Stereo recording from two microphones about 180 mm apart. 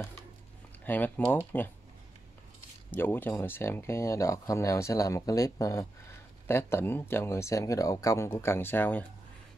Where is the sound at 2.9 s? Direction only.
10° left (ahead or behind).